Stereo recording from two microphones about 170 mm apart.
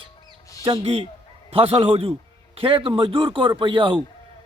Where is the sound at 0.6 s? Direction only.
30° right (ahead or behind).